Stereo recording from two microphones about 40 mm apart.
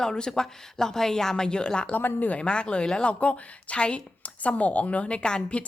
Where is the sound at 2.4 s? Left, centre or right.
Left.